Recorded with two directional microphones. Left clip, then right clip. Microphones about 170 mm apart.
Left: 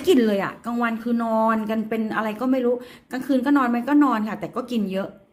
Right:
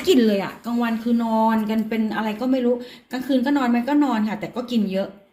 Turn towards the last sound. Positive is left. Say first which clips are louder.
# right 2 dB
turn(degrees=10)  # may be behind; listen again after turning